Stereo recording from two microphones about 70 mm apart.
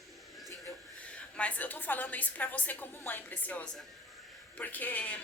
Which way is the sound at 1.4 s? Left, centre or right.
Left.